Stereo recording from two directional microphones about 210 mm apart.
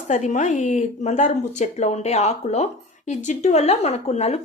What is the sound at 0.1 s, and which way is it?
Speech, 35° left (ahead or behind).